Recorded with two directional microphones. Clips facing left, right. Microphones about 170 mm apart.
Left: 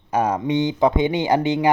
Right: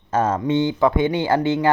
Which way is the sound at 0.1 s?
15° left (ahead or behind).